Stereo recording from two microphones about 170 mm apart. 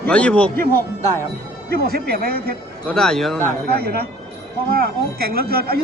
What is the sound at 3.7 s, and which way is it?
A man's voice, 65° right (ahead or behind).